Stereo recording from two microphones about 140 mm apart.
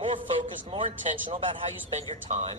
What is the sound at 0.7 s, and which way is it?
A man's voice, 40° right (ahead or behind).